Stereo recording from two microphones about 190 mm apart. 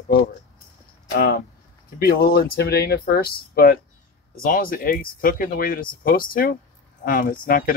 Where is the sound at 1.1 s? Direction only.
55° left (ahead or behind).